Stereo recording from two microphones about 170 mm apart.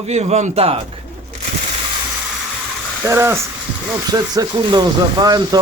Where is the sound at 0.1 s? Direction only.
40° right (ahead or behind).